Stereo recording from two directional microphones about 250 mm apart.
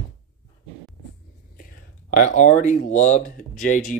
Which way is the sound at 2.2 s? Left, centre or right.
Left.